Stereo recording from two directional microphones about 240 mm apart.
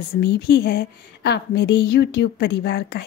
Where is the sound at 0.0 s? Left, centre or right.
Left.